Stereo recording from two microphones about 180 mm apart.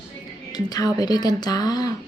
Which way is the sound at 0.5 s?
20° left (ahead or behind).